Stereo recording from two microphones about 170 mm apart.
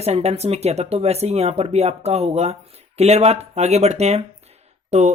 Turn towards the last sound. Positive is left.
turn(degrees=-40)  # may be behind; listen again after turning